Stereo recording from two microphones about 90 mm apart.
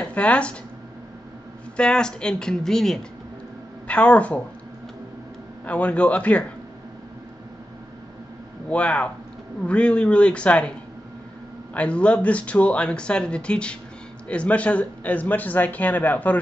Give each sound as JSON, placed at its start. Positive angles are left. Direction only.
{"t": 0.0, "sound": "speech", "side_deg": 15}
{"t": 1.8, "sound": "speech", "side_deg": 10}
{"t": 5.7, "sound": "speech", "side_deg": 15}
{"t": 8.6, "sound": "speech", "side_deg": 15}
{"t": 11.7, "sound": "speech", "side_deg": 15}